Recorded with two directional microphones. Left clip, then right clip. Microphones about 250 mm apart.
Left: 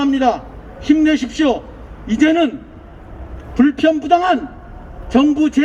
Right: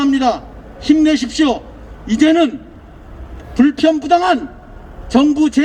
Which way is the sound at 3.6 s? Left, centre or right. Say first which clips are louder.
Right 1 dB; right.